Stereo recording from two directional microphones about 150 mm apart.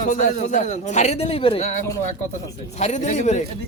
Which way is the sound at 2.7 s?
50° left (ahead or behind).